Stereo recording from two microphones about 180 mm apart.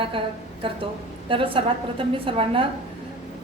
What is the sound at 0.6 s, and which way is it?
A woman's voice, 30° right (ahead or behind).